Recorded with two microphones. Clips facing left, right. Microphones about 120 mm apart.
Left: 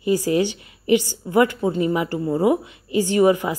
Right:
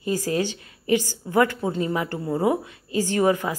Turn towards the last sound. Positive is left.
turn(degrees=15)  # may be behind; listen again after turning